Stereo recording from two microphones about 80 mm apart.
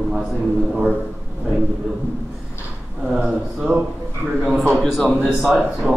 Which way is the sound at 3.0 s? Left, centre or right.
Centre.